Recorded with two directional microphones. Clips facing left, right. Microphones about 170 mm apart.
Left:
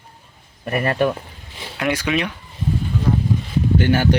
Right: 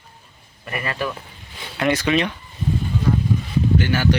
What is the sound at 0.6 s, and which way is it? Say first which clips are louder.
Speech: left 7 dB; 50° left (ahead or behind).